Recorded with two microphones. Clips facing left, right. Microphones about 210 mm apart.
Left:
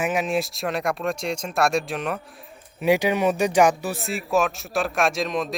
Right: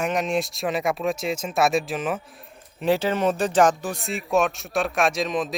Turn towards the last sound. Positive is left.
turn(degrees=0)  # may be behind; listen again after turning